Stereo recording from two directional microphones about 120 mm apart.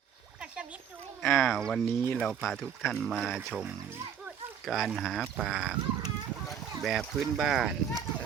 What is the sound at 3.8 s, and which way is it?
Wild animals, 20° right (ahead or behind).